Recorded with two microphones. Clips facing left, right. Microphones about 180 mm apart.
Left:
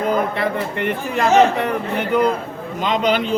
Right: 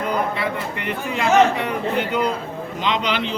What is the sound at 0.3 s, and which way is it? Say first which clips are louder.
A man's voice: left 4 dB; 45° left (ahead or behind).